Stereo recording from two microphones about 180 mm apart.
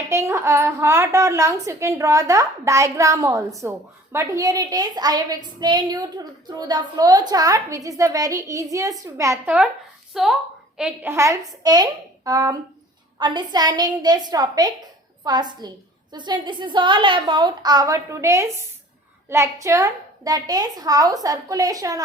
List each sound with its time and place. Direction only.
0.1 s a woman's voice: 15° right (ahead or behind)
10.1 s a woman's voice: centre (ahead or behind); by 22.0 s 20° right (ahead or behind)